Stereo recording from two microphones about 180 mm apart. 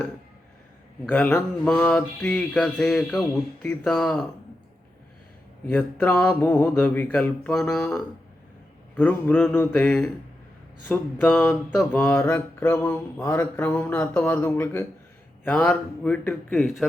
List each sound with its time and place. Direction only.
1.1 s mantra: 10° left (ahead or behind)
1.6 s a sound: 10° left (ahead or behind)
5.7 s mantra: 10° left (ahead or behind)